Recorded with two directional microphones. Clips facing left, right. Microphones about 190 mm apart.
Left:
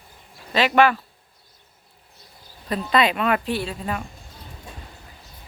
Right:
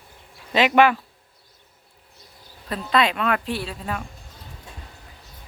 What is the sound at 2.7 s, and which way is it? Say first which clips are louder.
A woman's voice: left 1 dB; centre (ahead or behind).